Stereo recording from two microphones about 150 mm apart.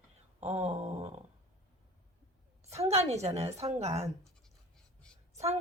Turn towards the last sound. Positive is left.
turn(degrees=-45)  # may be behind; listen again after turning